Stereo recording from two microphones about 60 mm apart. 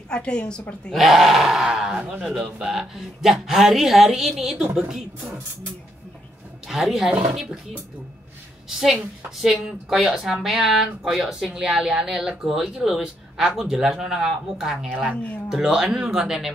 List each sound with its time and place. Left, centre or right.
0.1 s a woman's voice: centre
0.9 s a woman's voice: centre
6.7 s speech: centre
9.4 s speech: centre
14.9 s a woman's voice: centre
15.5 s speech: centre